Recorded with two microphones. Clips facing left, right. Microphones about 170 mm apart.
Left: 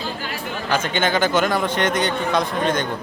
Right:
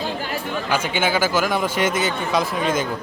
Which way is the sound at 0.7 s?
10° right (ahead or behind).